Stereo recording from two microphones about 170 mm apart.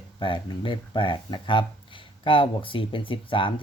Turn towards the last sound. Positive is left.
turn(degrees=30)  # may be behind; listen again after turning